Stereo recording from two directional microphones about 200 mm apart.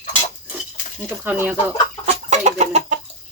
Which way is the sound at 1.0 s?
5° right (ahead or behind).